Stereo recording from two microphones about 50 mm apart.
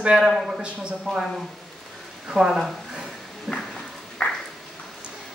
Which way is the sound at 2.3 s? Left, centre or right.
Centre.